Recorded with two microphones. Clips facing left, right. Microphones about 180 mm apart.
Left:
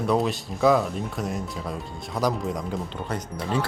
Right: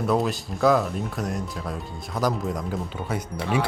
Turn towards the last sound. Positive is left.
turn(degrees=-5)  # may be behind; listen again after turning